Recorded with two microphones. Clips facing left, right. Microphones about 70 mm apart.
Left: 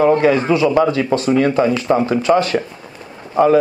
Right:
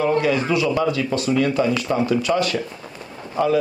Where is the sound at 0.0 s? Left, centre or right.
Left.